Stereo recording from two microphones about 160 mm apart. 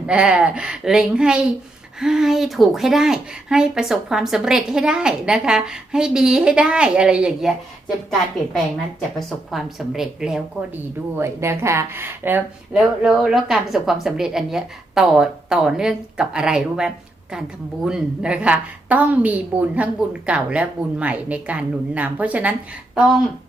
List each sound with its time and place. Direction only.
0.1 s a woman's voice: 5° right (ahead or behind)
9.1 s a woman's voice: centre (ahead or behind)
11.2 s a woman's voice: 15° right (ahead or behind)